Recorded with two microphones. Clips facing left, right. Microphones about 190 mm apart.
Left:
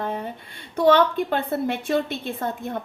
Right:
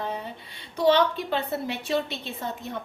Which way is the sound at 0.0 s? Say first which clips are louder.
Left 4 dB; 50° left (ahead or behind).